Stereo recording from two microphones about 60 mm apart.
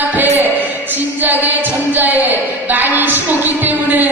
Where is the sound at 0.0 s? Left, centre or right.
Right.